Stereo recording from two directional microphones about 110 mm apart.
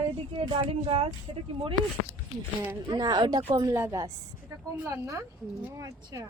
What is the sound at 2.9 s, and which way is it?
A woman's voice, 35° right (ahead or behind).